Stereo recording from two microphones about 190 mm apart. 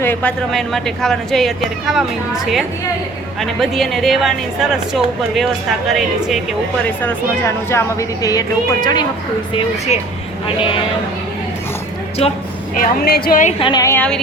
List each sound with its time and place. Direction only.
0.0 s speech: 10° left (ahead or behind)
6.8 s a woman's voice: 10° left (ahead or behind)
9.6 s speech: 35° left (ahead or behind)
12.2 s speech: 30° left (ahead or behind)
12.7 s a woman's voice: 45° left (ahead or behind)
13.6 s a woman's voice: 20° left (ahead or behind)